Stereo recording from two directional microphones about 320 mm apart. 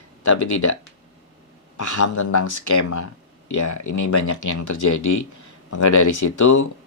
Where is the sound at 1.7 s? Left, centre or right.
Left.